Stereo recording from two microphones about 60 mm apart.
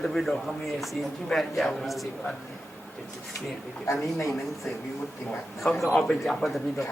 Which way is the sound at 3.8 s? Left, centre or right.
Left.